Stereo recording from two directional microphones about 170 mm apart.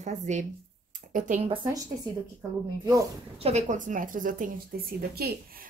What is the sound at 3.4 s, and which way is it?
A woman's voice, 45° right (ahead or behind).